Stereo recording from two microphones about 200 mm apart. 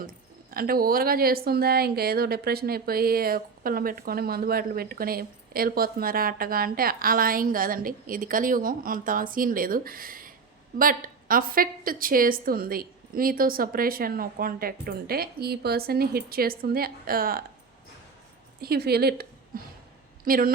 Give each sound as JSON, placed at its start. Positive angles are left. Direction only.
{"t": 0.5, "sound": "speech", "side_deg": -45}
{"t": 18.6, "sound": "speech", "side_deg": -50}